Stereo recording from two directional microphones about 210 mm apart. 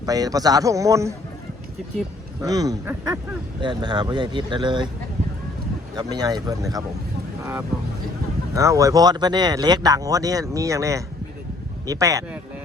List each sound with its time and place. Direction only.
0.0 s speech: 15° right (ahead or behind)
2.4 s speech: 15° right (ahead or behind)
5.9 s speech: 20° right (ahead or behind)
8.5 s speech: 15° right (ahead or behind)